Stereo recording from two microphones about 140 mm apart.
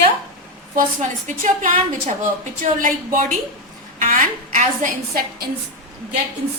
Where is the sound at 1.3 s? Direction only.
65° right (ahead or behind).